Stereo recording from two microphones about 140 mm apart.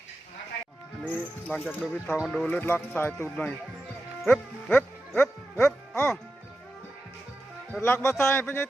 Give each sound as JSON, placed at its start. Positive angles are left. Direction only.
{"t": 1.0, "sound": "music", "side_deg": 10}
{"t": 1.5, "sound": "speech", "side_deg": 5}
{"t": 4.7, "sound": "music", "side_deg": 15}
{"t": 7.8, "sound": "a man's voice", "side_deg": 20}